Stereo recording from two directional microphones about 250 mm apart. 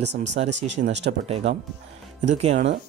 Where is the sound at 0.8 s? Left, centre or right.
Right.